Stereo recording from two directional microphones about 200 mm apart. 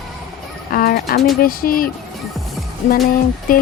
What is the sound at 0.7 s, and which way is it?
Speech, 45° left (ahead or behind).